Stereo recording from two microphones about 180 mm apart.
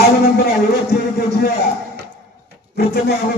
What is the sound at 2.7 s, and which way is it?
Speech, 60° left (ahead or behind).